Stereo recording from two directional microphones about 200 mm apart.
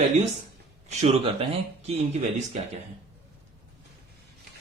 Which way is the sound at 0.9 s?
35° right (ahead or behind).